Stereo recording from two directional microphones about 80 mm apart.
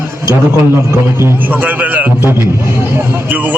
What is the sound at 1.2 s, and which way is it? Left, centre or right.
Speech, right.